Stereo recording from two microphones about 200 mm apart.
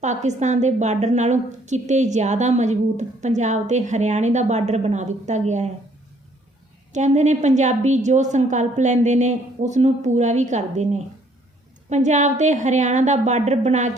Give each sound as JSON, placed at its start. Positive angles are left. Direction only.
{"t": 0.0, "sound": "a woman's voice", "side_deg": -35}
{"t": 6.9, "sound": "a woman's voice", "side_deg": -35}